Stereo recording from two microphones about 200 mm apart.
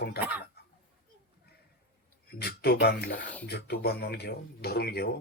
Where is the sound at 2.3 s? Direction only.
50° left (ahead or behind).